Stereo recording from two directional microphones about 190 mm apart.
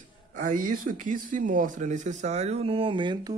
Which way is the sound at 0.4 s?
45° right (ahead or behind).